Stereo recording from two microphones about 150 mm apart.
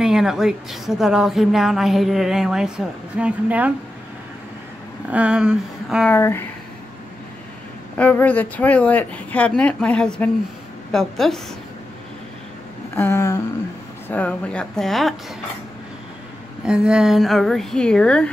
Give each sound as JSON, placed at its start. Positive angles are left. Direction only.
{"t": 0.0, "sound": "a woman's voice", "side_deg": -5}
{"t": 5.1, "sound": "a woman's voice", "side_deg": -5}
{"t": 6.0, "sound": "speech", "side_deg": 15}
{"t": 8.0, "sound": "a woman's voice", "side_deg": 10}
{"t": 12.9, "sound": "speech", "side_deg": 15}
{"t": 16.6, "sound": "a woman's voice", "side_deg": -5}